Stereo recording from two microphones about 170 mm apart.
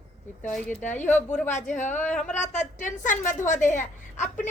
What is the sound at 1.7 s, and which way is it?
Speech, 45° left (ahead or behind).